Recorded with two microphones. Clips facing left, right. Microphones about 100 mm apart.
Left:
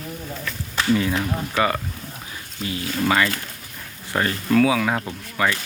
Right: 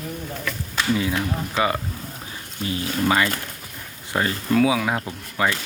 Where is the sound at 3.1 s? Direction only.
20° right (ahead or behind).